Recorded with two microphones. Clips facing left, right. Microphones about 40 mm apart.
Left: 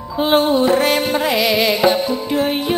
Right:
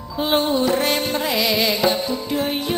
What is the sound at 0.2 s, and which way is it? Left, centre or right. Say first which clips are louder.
Music: left 5 dB; centre.